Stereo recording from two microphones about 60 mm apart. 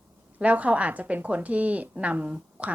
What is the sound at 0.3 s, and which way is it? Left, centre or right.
A woman's voice, right.